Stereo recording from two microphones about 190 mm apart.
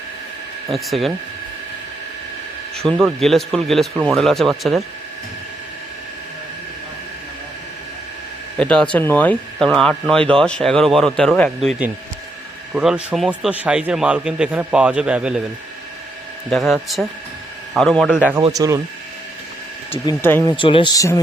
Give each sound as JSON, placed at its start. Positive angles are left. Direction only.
{"t": 0.7, "sound": "speech", "side_deg": 0}
{"t": 2.7, "sound": "speech", "side_deg": 0}
{"t": 8.5, "sound": "speech", "side_deg": 5}
{"t": 16.5, "sound": "speech", "side_deg": 0}
{"t": 18.5, "sound": "speech", "side_deg": -20}
{"t": 20.2, "sound": "speech", "side_deg": 10}
{"t": 20.5, "sound": "speech", "side_deg": 25}